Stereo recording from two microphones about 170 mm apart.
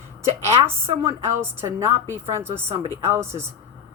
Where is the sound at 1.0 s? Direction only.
15° right (ahead or behind).